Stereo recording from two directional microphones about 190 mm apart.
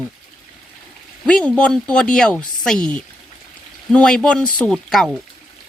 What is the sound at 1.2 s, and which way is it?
Speech, 5° left (ahead or behind).